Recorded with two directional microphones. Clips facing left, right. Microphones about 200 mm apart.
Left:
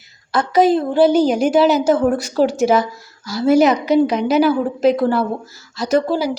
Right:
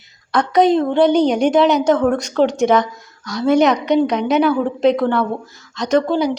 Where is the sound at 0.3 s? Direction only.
5° left (ahead or behind).